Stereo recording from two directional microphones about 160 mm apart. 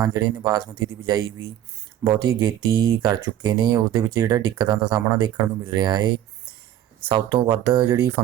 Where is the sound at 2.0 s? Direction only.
20° right (ahead or behind).